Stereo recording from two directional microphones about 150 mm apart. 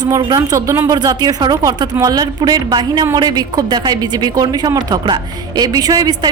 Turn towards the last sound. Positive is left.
turn(degrees=-25)  # may be behind; listen again after turning